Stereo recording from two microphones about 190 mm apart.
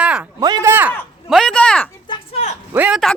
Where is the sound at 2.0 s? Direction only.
30° left (ahead or behind).